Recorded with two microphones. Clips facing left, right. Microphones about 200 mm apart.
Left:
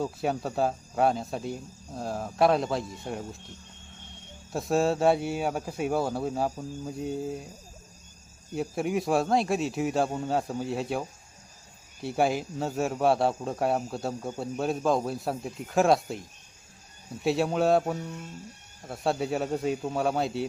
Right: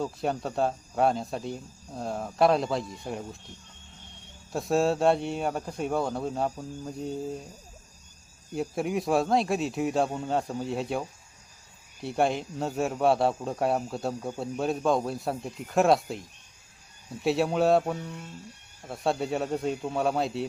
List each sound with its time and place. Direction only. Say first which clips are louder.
0.0 s speech: left 1 dB; 5° left (ahead or behind)
4.5 s speech: even; centre (ahead or behind)
8.5 s speech: even; centre (ahead or behind)
12.0 s speech: even; 5° left (ahead or behind)
17.2 s speech: right 1 dB; centre (ahead or behind)